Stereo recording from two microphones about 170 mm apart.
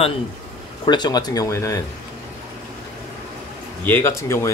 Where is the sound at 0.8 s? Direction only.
25° left (ahead or behind).